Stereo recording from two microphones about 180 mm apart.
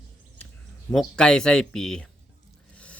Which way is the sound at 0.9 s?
5° left (ahead or behind).